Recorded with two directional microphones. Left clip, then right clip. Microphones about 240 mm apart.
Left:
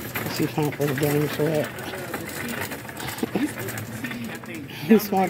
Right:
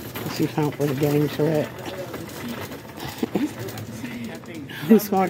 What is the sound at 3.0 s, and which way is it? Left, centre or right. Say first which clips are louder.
Sewing machine: right 1 dB; centre.